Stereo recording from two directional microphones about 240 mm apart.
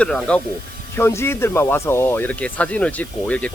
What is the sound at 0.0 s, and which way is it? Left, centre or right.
Speech, centre.